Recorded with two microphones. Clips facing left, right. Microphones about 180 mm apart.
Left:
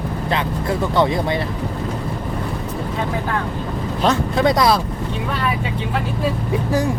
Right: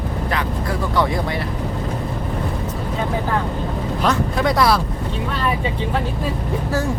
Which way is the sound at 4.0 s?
25° left (ahead or behind).